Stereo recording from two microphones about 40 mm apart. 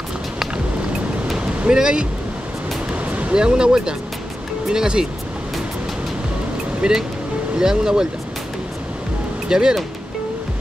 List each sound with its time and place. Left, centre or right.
1.7 s speech: right
2.9 s music: right
3.3 s speech: right
6.8 s speech: centre
9.5 s speech: centre